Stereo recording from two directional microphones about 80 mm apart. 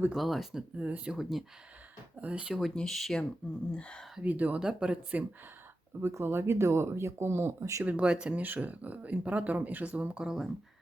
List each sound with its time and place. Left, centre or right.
0.1 s speech: centre
0.8 s speech: centre
2.2 s speech: centre
2.6 s speech: centre
4.2 s speech: centre
6.0 s speech: right
7.9 s speech: centre
10.2 s speech: centre